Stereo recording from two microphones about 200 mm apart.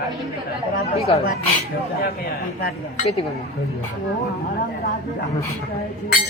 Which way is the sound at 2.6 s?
45° left (ahead or behind).